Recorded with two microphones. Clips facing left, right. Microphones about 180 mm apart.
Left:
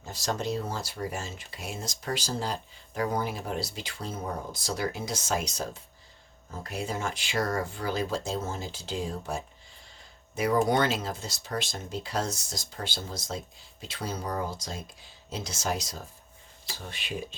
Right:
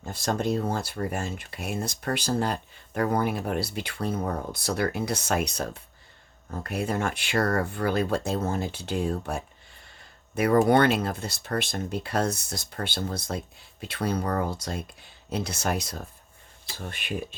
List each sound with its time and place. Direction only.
0.0 s speech: 55° right (ahead or behind)